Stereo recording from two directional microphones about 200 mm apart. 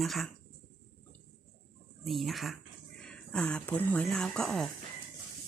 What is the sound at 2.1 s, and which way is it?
Speech, centre (ahead or behind).